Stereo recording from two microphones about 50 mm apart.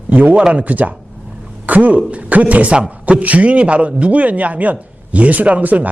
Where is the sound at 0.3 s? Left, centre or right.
Right.